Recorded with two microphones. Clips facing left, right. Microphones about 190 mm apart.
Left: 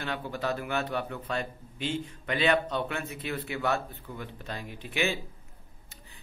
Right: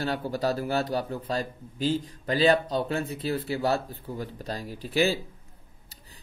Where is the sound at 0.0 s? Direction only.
40° right (ahead or behind).